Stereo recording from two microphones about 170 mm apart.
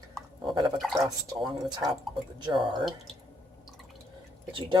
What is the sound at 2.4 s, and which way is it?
Speech, 25° right (ahead or behind).